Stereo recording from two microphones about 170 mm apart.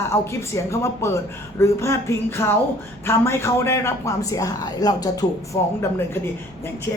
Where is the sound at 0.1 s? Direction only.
15° left (ahead or behind).